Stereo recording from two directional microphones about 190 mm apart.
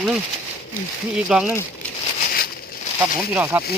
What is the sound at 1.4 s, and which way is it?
Speech, 15° left (ahead or behind).